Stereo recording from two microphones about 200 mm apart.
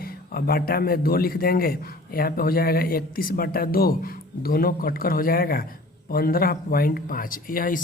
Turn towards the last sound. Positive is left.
turn(degrees=45)  # may be behind; listen again after turning